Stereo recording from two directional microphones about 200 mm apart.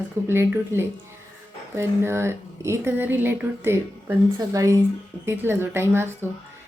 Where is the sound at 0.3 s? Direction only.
10° right (ahead or behind).